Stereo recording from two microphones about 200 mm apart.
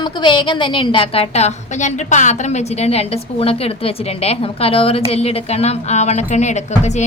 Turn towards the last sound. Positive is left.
turn(degrees=35)  # may be behind; listen again after turning